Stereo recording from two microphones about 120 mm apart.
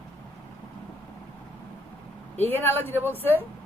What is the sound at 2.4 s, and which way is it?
Speech, 15° left (ahead or behind).